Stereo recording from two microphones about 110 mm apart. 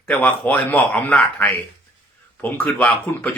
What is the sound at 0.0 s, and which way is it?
Speech, 15° left (ahead or behind).